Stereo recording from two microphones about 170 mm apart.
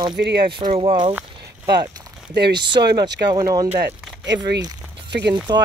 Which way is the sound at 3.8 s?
80° right.